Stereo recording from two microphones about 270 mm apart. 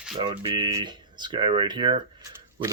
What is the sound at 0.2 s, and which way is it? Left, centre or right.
Speech, centre.